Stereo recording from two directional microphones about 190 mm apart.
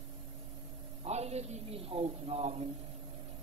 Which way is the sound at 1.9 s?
30° right (ahead or behind).